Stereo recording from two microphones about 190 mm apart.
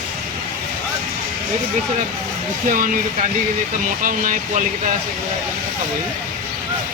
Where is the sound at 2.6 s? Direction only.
45° right (ahead or behind).